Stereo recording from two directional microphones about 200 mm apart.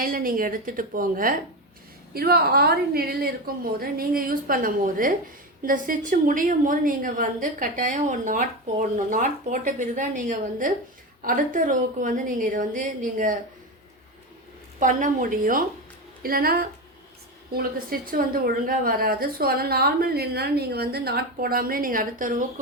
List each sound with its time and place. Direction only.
0.0 s a woman's voice: 45° right (ahead or behind)
14.8 s a woman's voice: 40° right (ahead or behind)